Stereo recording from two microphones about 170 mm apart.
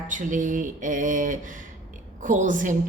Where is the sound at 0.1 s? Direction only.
50° right (ahead or behind).